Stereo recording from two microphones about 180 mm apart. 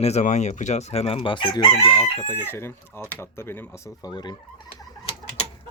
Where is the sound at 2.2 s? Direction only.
10° left (ahead or behind).